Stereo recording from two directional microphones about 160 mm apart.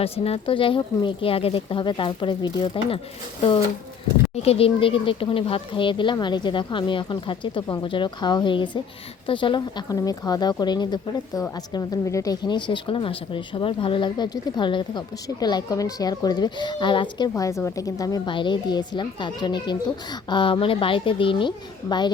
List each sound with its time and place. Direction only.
0.0 s speech: 35° left (ahead or behind)
4.4 s speech: 35° left (ahead or behind)